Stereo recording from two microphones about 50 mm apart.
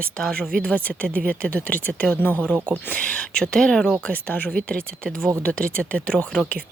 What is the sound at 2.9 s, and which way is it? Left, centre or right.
Speech, left.